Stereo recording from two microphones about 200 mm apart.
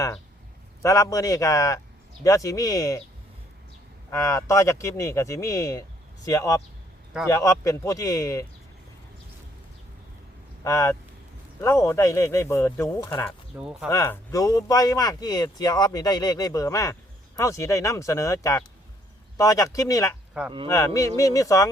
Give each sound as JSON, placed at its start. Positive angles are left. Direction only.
{"t": 0.8, "sound": "speech", "side_deg": 15}
{"t": 4.1, "sound": "speech", "side_deg": 15}
{"t": 10.6, "sound": "speech", "side_deg": 15}
{"t": 13.6, "sound": "speech", "side_deg": -5}
{"t": 13.9, "sound": "speech", "side_deg": 15}